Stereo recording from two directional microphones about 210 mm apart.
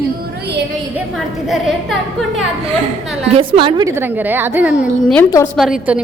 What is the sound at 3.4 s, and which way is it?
A woman's voice, 25° right (ahead or behind).